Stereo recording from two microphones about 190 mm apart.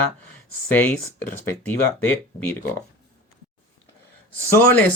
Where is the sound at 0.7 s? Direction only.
10° left (ahead or behind).